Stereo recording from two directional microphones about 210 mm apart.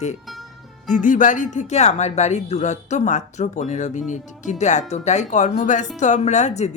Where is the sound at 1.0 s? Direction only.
40° left (ahead or behind).